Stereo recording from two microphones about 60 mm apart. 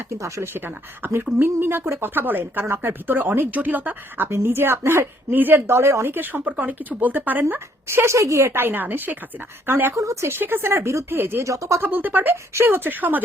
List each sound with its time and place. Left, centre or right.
0.2 s speech: right
0.5 s speech: right
4.3 s speech: right
5.3 s speech: right
7.9 s speech: right
8.5 s speech: right
9.9 s speech: right
10.2 s speech: right
11.4 s speech: right
11.8 s speech: right